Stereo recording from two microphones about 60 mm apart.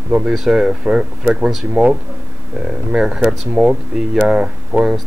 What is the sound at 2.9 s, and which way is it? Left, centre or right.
Speech, centre.